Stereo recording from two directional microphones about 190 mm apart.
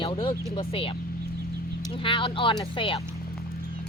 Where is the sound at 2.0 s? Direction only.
25° left (ahead or behind).